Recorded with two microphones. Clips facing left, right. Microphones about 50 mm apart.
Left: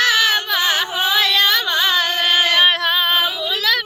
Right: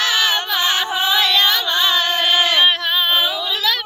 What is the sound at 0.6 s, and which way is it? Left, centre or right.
Music, right.